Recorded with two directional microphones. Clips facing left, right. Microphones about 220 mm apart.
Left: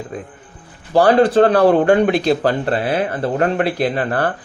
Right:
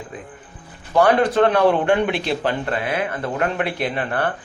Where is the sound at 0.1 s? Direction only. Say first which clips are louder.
Left 5 dB; 35° left (ahead or behind).